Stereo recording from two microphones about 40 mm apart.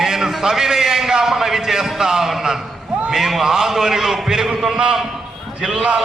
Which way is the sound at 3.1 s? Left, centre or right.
Centre.